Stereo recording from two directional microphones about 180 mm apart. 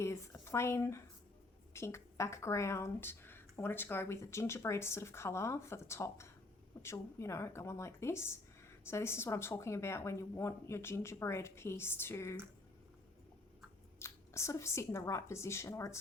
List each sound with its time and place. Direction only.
0.0 s speech: 15° left (ahead or behind)
14.0 s speech: 15° left (ahead or behind)